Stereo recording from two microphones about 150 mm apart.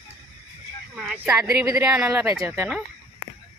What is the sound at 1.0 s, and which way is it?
Speech, 5° right (ahead or behind).